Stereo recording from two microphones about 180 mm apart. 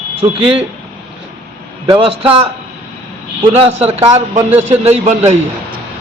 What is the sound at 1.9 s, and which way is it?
A man's voice, 30° right (ahead or behind).